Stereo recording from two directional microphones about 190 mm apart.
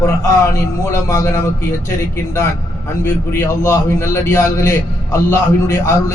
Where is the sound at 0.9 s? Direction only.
15° left (ahead or behind).